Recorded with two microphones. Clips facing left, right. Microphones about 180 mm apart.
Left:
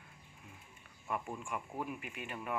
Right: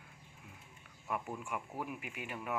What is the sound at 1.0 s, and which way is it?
Speech, 5° right (ahead or behind).